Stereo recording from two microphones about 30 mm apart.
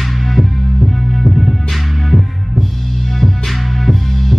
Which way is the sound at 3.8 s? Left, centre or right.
Centre.